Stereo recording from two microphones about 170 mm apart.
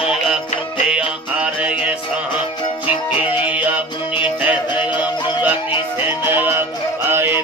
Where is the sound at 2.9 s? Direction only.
30° left (ahead or behind).